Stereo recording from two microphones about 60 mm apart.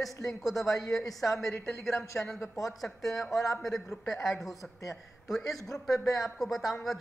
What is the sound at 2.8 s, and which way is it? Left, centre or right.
Speech, centre.